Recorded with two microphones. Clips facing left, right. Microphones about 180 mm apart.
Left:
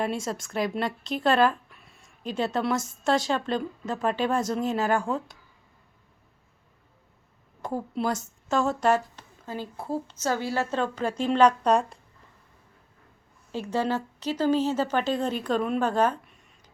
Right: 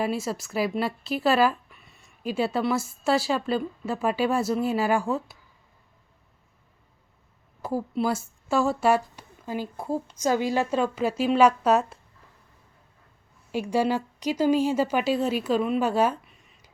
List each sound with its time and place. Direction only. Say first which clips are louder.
0.0 s speech: right 2 dB; 5° right (ahead or behind)
7.6 s a woman's voice: right 2 dB; 5° right (ahead or behind)
13.5 s a woman's voice: right 3 dB; 10° right (ahead or behind)